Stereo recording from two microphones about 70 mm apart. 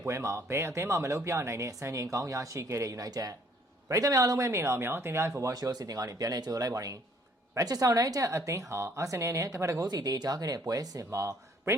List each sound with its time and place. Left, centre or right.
0.1 s speech: right
9.8 s speech: right
11.2 s speech: right